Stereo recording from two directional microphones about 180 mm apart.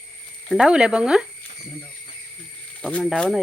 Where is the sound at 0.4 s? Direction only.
5° right (ahead or behind).